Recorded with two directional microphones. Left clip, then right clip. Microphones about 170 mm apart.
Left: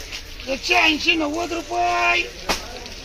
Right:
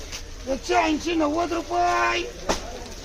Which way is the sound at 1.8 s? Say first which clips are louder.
Left 3 dB; 10° right (ahead or behind).